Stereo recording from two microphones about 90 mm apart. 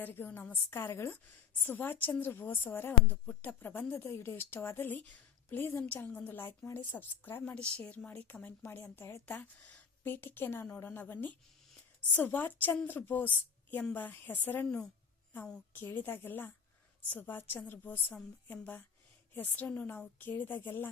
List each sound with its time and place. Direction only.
0.0 s a woman's voice: 20° left (ahead or behind)
7.5 s a woman's voice: 15° left (ahead or behind)
15.7 s a woman's voice: 20° left (ahead or behind)